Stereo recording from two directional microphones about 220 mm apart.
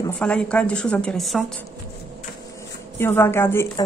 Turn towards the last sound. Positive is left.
turn(degrees=10)  # may be behind; listen again after turning